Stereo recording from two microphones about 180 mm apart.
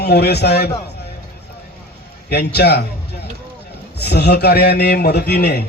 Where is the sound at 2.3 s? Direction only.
65° left (ahead or behind).